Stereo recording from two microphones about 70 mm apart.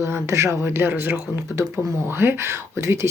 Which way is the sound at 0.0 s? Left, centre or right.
Right.